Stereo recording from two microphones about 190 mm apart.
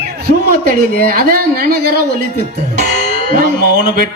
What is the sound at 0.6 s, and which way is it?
Speech, 50° right (ahead or behind).